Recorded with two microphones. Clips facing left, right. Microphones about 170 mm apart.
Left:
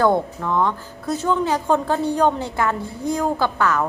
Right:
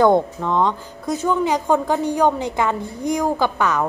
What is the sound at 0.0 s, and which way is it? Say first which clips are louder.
A woman's voice: right 3 dB; 20° right (ahead or behind).